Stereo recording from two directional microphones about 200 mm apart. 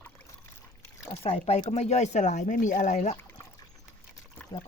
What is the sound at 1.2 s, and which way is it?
Speech, 30° left (ahead or behind).